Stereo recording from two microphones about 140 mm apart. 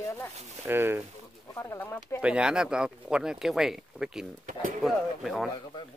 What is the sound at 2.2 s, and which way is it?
Speech, 5° right (ahead or behind).